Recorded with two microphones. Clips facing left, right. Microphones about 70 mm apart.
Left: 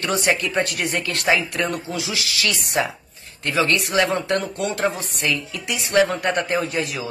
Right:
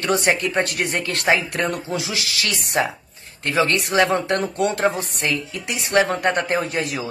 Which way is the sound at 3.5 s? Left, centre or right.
Right.